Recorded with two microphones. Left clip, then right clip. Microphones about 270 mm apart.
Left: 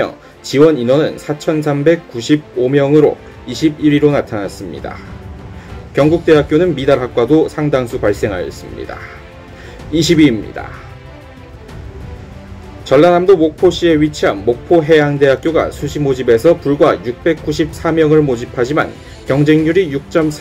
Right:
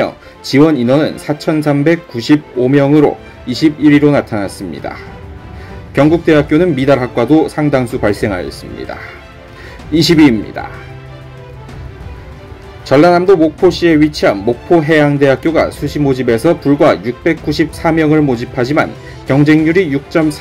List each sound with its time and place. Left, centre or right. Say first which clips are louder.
0.0 s speech: right 2 dB; right
5.9 s speech: even; right
12.8 s speech: right 1 dB; right